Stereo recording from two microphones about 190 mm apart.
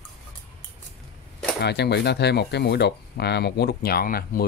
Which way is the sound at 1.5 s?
60° left (ahead or behind).